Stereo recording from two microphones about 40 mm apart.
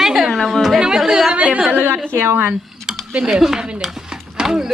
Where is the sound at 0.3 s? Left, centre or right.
Centre.